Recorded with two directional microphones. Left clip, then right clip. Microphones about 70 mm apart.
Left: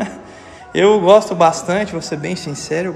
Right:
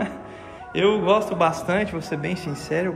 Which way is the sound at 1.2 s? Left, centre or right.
Left.